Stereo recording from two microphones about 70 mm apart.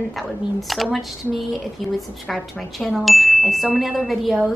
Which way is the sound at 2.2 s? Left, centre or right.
Centre.